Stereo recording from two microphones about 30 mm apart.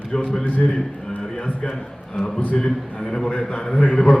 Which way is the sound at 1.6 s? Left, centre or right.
Centre.